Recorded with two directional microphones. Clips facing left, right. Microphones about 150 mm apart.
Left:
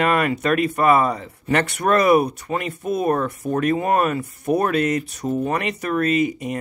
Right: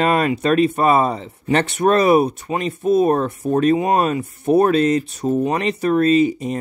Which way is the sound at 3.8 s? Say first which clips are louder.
Right 2 dB; 15° right (ahead or behind).